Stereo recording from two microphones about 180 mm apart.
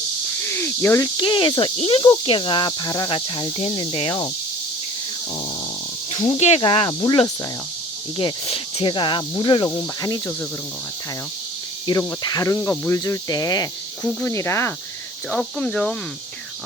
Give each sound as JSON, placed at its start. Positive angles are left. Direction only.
{"t": 0.4, "sound": "speech", "side_deg": 15}
{"t": 6.1, "sound": "speech", "side_deg": 30}
{"t": 8.2, "sound": "speech", "side_deg": 30}
{"t": 11.9, "sound": "speech", "side_deg": 20}